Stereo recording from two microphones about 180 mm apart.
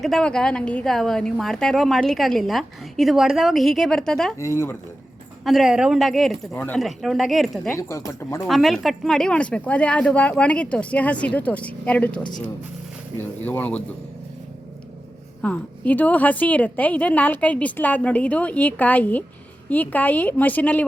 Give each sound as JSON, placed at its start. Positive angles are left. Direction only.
{"t": 0.0, "sound": "a woman's voice", "side_deg": 5}
{"t": 4.4, "sound": "a woman's voice", "side_deg": 15}
{"t": 5.5, "sound": "a woman's voice", "side_deg": 0}
{"t": 7.7, "sound": "a woman's voice", "side_deg": 15}
{"t": 8.4, "sound": "a woman's voice", "side_deg": 0}
{"t": 15.4, "sound": "a woman's voice", "side_deg": 5}